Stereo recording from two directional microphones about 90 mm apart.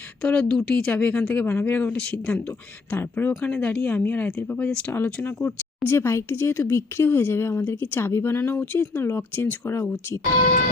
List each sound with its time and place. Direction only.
0.2 s speech: 10° left (ahead or behind)
3.0 s speech: 25° left (ahead or behind)
3.5 s speech: 10° left (ahead or behind)
4.9 s speech: 25° left (ahead or behind)